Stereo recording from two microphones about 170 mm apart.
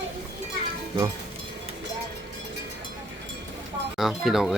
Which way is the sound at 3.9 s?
Centre (ahead or behind).